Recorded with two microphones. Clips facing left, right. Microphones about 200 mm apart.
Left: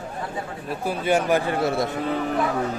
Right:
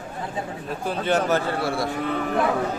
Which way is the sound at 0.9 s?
10° left (ahead or behind).